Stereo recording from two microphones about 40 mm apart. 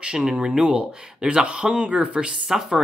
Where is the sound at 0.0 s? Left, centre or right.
Centre.